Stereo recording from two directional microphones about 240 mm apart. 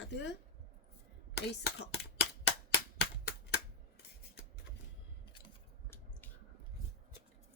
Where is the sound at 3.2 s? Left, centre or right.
Left.